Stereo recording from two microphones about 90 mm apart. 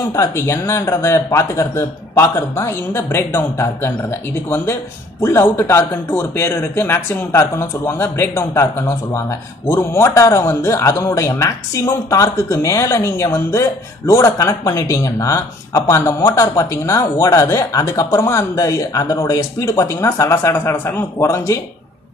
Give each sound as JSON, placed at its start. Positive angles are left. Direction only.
{"t": 0.1, "sound": "a man's voice", "side_deg": 35}
{"t": 5.2, "sound": "a man's voice", "side_deg": 25}